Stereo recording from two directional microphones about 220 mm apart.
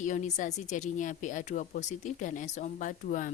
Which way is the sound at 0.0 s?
35° left (ahead or behind).